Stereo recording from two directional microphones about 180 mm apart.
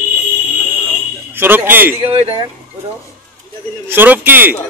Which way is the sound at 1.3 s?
10° right (ahead or behind).